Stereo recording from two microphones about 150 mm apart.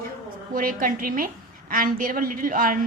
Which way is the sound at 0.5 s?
70° right (ahead or behind).